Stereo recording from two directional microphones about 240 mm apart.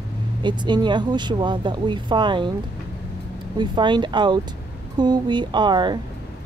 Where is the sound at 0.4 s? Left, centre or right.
Centre.